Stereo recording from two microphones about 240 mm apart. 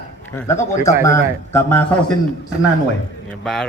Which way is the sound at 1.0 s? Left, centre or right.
Centre.